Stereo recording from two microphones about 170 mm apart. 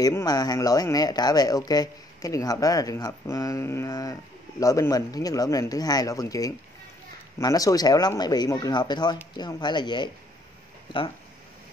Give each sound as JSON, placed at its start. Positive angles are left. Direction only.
{"t": 0.0, "sound": "speech", "side_deg": 20}